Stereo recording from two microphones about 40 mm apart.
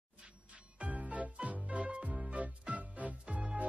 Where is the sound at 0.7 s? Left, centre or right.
Right.